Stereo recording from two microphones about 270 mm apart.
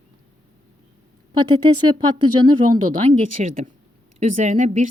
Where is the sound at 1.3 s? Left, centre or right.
Centre.